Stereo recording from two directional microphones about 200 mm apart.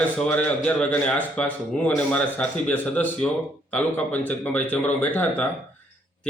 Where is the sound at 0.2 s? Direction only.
5° left (ahead or behind).